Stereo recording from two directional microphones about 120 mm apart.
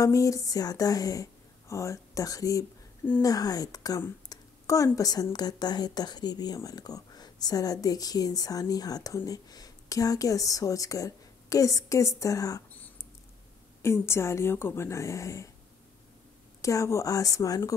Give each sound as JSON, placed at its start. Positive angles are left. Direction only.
{"t": 0.0, "sound": "a woman's voice", "side_deg": 25}
{"t": 13.8, "sound": "speech", "side_deg": 20}
{"t": 16.6, "sound": "speech", "side_deg": 25}